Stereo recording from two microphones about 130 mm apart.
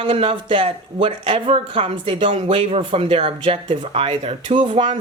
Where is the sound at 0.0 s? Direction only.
45° right (ahead or behind).